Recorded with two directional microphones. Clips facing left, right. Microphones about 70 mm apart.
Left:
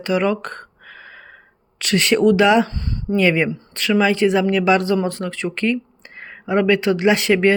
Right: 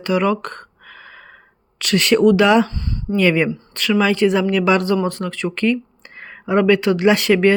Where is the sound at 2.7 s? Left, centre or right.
Left.